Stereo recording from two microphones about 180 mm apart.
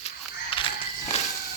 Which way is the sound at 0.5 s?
30° left (ahead or behind).